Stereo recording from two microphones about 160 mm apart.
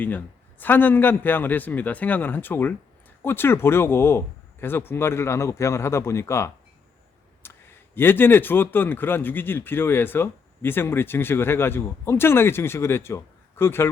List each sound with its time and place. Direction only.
0.6 s a man's voice: 10° left (ahead or behind)
7.4 s a sound: 15° left (ahead or behind)
7.9 s a man's voice: 15° left (ahead or behind)